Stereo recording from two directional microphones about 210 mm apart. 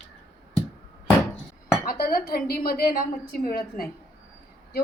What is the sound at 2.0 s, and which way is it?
A woman's voice, 45° left (ahead or behind).